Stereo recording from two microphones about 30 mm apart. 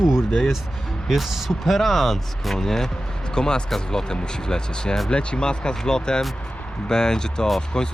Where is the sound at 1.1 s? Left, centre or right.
Centre.